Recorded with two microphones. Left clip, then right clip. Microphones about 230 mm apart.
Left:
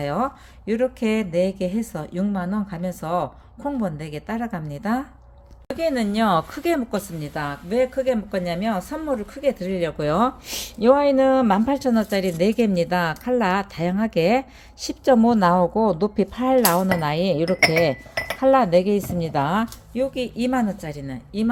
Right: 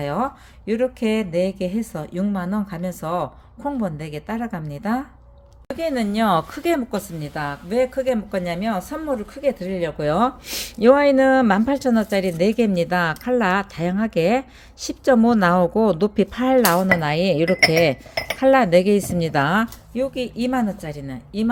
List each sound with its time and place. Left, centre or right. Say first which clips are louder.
0.0 s a woman's voice: even; centre
10.8 s speech: right 2 dB; centre